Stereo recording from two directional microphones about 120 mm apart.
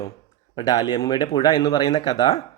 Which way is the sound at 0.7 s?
30° left (ahead or behind).